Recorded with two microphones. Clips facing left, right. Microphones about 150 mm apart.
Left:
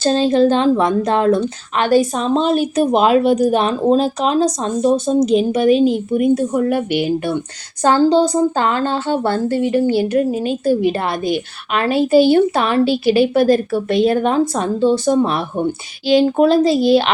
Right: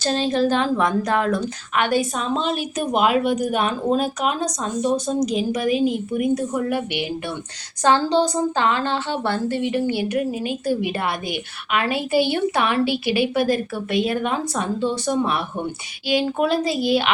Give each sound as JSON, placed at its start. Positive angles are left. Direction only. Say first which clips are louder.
{"t": 0.0, "sound": "a woman's voice", "louder": "left 7 dB", "side_deg": 30}
{"t": 10.1, "sound": "speech", "louder": "left 6 dB", "side_deg": 35}
{"t": 11.9, "sound": "a woman's voice", "louder": "left 10 dB", "side_deg": -10}
{"t": 12.2, "sound": "speech", "louder": "left 8 dB", "side_deg": 40}
{"t": 12.8, "sound": "a woman's voice", "louder": "left 7 dB", "side_deg": -15}
{"t": 13.1, "sound": "speech", "louder": "left 6 dB", "side_deg": 40}